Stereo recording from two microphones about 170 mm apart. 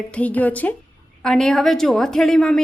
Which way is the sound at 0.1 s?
10° left (ahead or behind).